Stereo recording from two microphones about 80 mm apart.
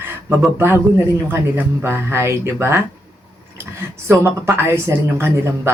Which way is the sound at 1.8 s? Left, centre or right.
Right.